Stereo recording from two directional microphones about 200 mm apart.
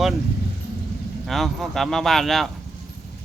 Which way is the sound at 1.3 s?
Centre (ahead or behind).